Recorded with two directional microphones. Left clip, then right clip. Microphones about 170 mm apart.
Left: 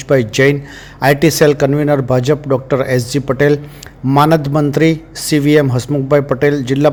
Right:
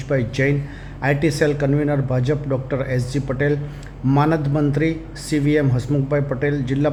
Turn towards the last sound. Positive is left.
turn(degrees=40)  # may be behind; listen again after turning